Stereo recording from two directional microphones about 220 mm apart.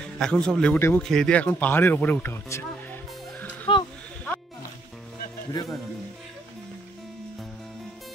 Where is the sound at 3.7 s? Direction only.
25° left (ahead or behind).